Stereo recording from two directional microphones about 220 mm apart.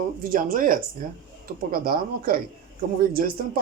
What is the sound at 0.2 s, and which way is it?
Speech, 40° right (ahead or behind).